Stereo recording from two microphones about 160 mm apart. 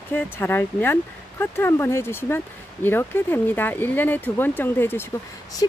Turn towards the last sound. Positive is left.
turn(degrees=20)  # may be behind; listen again after turning